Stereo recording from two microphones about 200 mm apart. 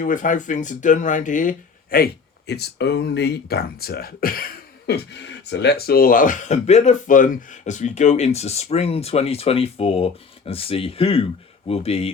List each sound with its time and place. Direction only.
0.0 s speech: 40° left (ahead or behind)
2.5 s speech: 55° left (ahead or behind); by 12.1 s 30° left (ahead or behind)